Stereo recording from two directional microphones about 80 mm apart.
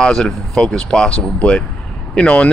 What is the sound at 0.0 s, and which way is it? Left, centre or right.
Speech, centre.